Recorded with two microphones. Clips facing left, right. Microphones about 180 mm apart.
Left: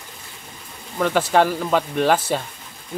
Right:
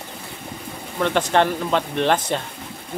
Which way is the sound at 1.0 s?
5° left (ahead or behind).